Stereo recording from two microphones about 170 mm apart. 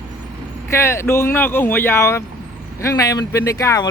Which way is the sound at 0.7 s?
15° left (ahead or behind).